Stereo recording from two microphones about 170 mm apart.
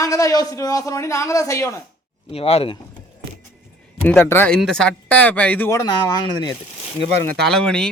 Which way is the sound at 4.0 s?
10° left (ahead or behind).